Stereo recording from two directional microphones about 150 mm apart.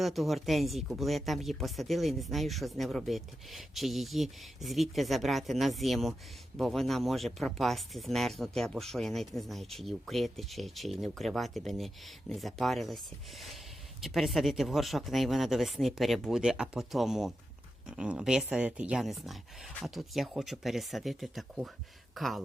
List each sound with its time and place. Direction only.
0.0 s speech: centre (ahead or behind)
14.0 s speech: centre (ahead or behind)